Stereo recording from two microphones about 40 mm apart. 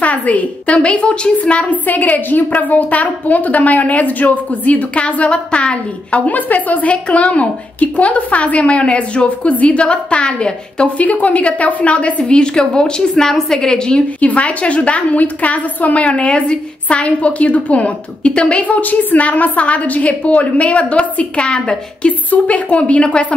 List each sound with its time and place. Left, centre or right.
0.0 s a woman's voice: left
0.8 s a woman's voice: left
1.9 s a woman's voice: left
6.2 s a woman's voice: left
11.0 s a woman's voice: left
12.4 s a woman's voice: left
14.2 s a woman's voice: left
22.3 s a woman's voice: left